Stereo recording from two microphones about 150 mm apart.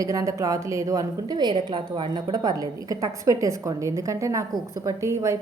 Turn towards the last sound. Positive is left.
turn(degrees=-20)  # may be behind; listen again after turning